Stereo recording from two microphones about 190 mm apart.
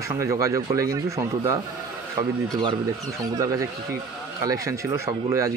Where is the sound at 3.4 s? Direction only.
15° right (ahead or behind).